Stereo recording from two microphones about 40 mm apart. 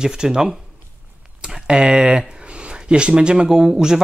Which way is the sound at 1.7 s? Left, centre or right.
Centre.